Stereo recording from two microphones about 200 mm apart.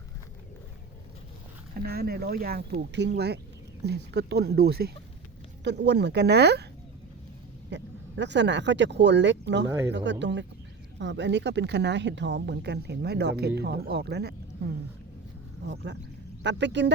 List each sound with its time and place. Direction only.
1.8 s a woman's voice: 50° right (ahead or behind)
7.7 s a woman's voice: 60° right (ahead or behind)